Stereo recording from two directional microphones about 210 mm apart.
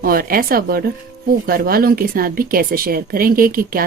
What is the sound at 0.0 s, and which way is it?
Speech, 45° right (ahead or behind).